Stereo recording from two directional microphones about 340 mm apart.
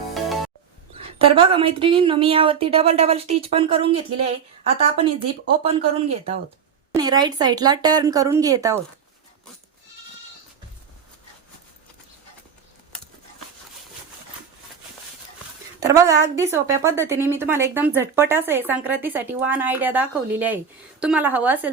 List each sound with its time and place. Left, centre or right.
0.1 s music: centre
0.9 s a woman's voice: centre
15.8 s a woman's voice: centre